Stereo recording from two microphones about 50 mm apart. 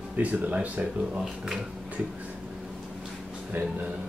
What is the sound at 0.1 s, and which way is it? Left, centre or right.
Speech, right.